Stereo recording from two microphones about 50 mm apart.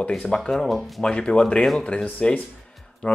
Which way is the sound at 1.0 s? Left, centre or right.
Centre.